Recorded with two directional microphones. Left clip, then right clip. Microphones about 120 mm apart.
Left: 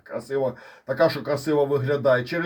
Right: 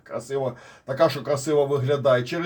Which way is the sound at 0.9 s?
30° left (ahead or behind).